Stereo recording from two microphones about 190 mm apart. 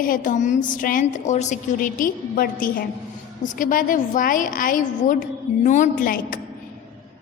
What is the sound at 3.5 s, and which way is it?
A woman's voice, 45° left (ahead or behind).